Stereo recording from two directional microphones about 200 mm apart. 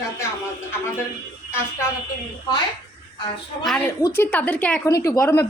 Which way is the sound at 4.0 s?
15° left (ahead or behind).